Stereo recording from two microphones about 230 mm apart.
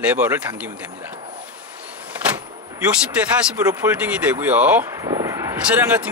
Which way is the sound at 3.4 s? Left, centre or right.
Centre.